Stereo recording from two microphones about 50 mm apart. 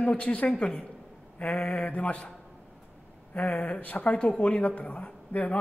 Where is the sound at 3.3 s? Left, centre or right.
Left.